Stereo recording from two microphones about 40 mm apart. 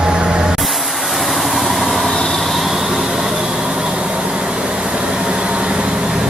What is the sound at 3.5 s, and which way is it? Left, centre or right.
Vehicle, right.